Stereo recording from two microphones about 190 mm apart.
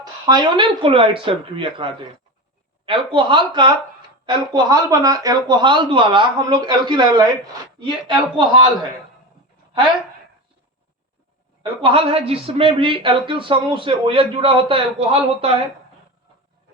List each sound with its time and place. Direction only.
0.0 s speech: 20° right (ahead or behind)
11.6 s speech: 25° right (ahead or behind)